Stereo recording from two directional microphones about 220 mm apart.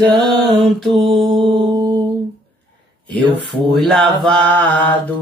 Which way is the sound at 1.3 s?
20° right (ahead or behind).